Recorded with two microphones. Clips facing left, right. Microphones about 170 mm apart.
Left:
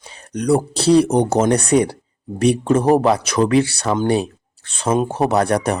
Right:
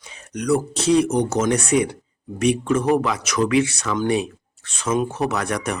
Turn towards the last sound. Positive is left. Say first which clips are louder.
# left 7 dB
turn(degrees=35)  # may be behind; listen again after turning